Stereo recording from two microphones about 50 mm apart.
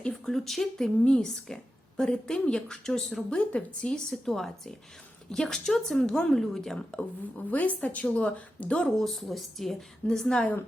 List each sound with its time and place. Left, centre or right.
0.1 s a woman's voice: centre
3.3 s speech: left
4.1 s a woman's voice: centre
6.9 s a woman's voice: left
9.0 s a woman's voice: centre